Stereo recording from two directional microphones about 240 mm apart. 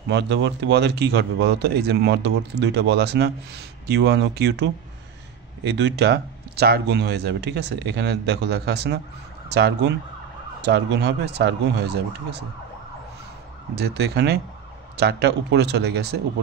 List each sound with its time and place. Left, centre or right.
0.1 s speech: right
13.7 s speech: right